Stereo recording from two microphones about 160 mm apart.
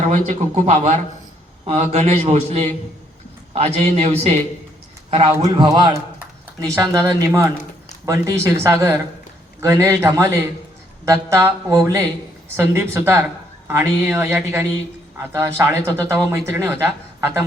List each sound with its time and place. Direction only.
0.1 s a man's voice: 45° right (ahead or behind)
5.5 s speech: 30° right (ahead or behind)